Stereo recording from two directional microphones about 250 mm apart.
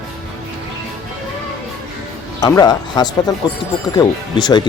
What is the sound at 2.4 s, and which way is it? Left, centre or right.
Speech, centre.